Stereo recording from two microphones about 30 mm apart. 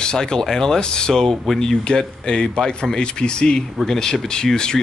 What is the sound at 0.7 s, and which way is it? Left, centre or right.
Speech, left.